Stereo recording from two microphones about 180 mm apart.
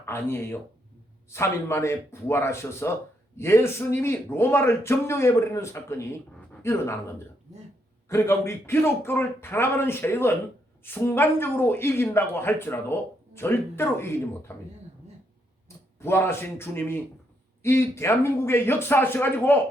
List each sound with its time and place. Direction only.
0.0 s speech: 15° left (ahead or behind)
8.1 s speech: 15° left (ahead or behind)
16.0 s speech: 15° left (ahead or behind)